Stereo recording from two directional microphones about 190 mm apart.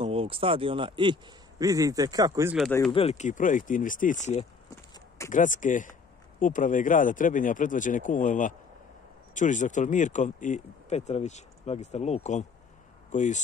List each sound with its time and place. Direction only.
0.0 s speech: 30° right (ahead or behind)
2.9 s speech: 30° left (ahead or behind)